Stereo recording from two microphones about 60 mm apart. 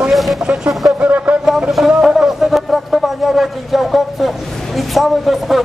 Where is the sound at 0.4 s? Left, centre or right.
Centre.